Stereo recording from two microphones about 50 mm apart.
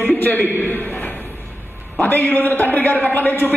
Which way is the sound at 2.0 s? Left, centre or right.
Left.